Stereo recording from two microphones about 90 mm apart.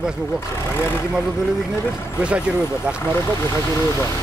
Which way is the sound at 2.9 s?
25° left (ahead or behind).